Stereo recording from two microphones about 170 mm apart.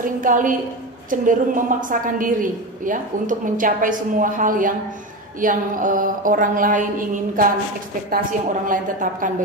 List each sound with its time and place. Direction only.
0.2 s a woman's voice: 50° right (ahead or behind)